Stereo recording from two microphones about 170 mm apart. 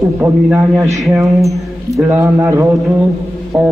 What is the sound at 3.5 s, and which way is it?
Speech, 5° right (ahead or behind).